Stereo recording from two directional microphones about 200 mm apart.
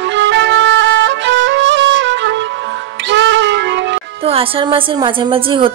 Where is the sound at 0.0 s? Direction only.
65° right (ahead or behind).